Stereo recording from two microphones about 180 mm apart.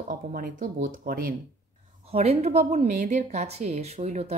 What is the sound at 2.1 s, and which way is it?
A woman's voice, 35° right (ahead or behind).